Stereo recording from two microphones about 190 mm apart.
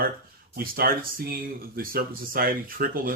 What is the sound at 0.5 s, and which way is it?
Speech, 50° right (ahead or behind).